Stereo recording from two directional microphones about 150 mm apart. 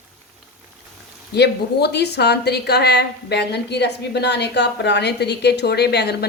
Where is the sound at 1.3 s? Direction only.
90° left.